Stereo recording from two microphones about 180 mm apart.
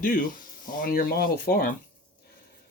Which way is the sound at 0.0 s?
50° left (ahead or behind).